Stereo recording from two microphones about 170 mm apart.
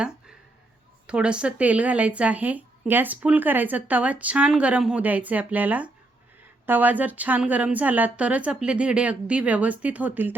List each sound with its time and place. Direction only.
1.0 s speech: 5° right (ahead or behind)